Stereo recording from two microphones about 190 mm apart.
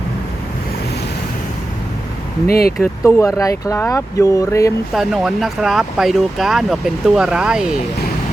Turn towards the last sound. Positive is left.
turn(degrees=-5)  # may be behind; listen again after turning